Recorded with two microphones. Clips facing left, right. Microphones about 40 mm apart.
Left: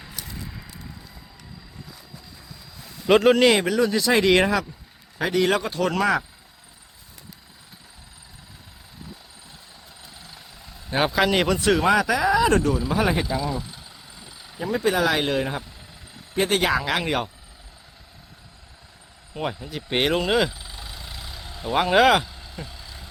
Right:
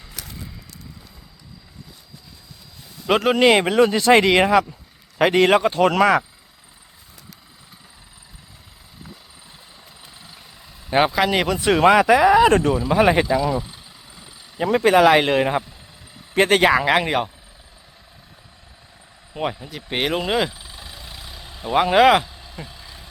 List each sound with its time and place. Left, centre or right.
3.1 s speech: centre
3.5 s speech: right
4.3 s speech: centre
5.1 s a man's voice: right
5.5 s speech: right
11.0 s speech: centre
11.8 s speech: right
14.6 s speech: right
16.3 s speech: right
16.6 s speech: right
19.3 s speech: centre
19.7 s vehicle: centre